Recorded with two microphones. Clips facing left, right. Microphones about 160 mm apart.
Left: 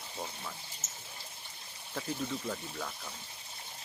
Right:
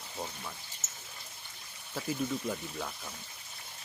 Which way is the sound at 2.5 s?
10° right (ahead or behind).